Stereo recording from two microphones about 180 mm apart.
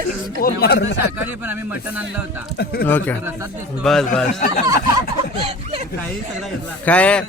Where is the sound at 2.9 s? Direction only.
10° left (ahead or behind).